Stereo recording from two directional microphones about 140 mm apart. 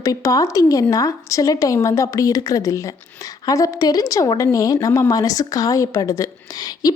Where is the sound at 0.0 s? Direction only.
25° left (ahead or behind).